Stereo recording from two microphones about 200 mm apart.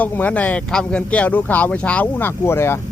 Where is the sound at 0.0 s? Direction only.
5° left (ahead or behind).